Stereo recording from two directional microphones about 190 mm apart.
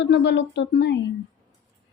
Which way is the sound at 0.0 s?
65° left (ahead or behind).